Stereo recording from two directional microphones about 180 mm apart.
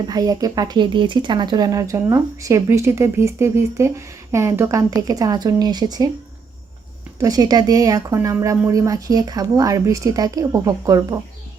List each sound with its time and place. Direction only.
0.0 s speech: 20° right (ahead or behind)
7.2 s speech: 20° right (ahead or behind)